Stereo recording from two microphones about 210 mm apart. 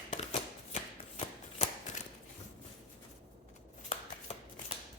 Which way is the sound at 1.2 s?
35° left (ahead or behind).